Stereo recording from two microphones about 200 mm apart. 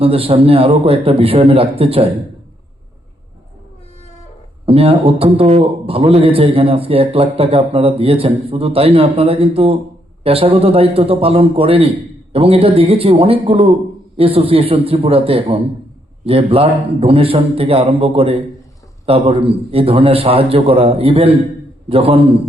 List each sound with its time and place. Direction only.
0.0 s a man's voice: 30° right (ahead or behind)
4.6 s a man's voice: 30° right (ahead or behind)